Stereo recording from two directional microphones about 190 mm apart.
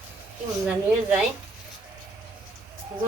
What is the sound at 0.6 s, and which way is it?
Speech, 5° right (ahead or behind).